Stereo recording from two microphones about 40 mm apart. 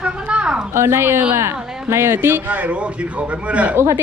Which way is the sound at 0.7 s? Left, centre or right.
Right.